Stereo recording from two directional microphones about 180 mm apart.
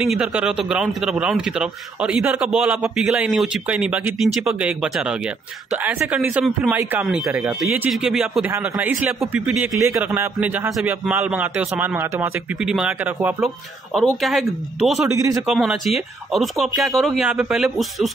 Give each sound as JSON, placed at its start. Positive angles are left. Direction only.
{"t": 0.0, "sound": "a man's voice", "side_deg": -5}
{"t": 15.1, "sound": "a man's voice", "side_deg": -20}
{"t": 15.4, "sound": "a man's voice", "side_deg": 0}